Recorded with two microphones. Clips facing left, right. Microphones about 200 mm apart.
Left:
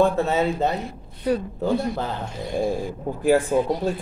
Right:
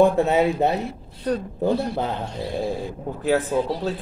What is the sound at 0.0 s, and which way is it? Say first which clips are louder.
Speech: right 3 dB; 15° right (ahead or behind).